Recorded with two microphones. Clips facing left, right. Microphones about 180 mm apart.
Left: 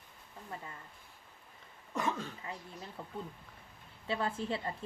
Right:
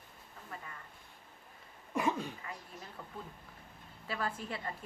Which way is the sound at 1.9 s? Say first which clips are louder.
Right 2 dB; 10° right (ahead or behind).